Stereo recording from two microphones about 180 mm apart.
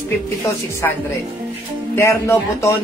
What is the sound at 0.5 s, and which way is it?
Speech, 15° left (ahead or behind).